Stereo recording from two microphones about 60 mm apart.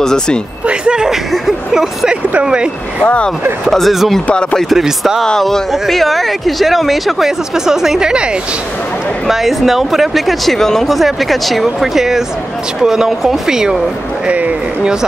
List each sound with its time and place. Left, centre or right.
0.0 s speech: centre
0.7 s speech: centre
3.6 s speech: centre
4.3 s speech: left
4.6 s speech: centre
5.2 s speech: centre
9.3 s speech: centre